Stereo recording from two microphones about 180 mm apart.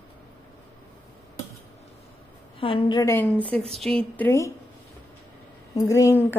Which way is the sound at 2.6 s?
30° left (ahead or behind).